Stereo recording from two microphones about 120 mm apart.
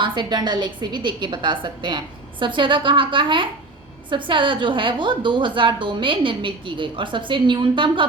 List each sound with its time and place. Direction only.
0.0 s a woman's voice: 40° right (ahead or behind)